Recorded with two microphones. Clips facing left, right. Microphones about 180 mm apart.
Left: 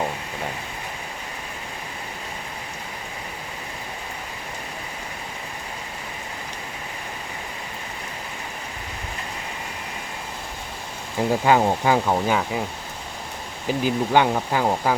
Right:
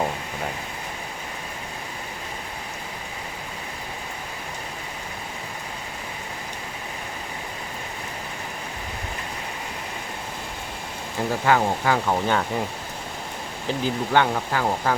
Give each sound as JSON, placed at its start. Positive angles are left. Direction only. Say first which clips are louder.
{"t": 11.4, "sound": "speech", "louder": "left 2 dB", "side_deg": 20}
{"t": 12.1, "sound": "speech", "louder": "left 1 dB", "side_deg": 5}
{"t": 13.7, "sound": "speech", "louder": "left 3 dB", "side_deg": 15}